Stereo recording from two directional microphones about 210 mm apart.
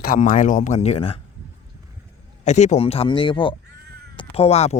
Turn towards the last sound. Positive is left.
turn(degrees=30)  # may be behind; listen again after turning